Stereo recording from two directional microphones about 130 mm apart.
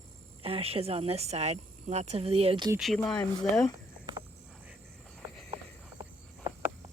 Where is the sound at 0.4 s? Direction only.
50° right (ahead or behind).